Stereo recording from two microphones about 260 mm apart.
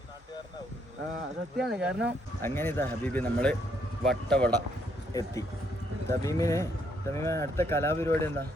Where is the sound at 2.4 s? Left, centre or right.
Centre.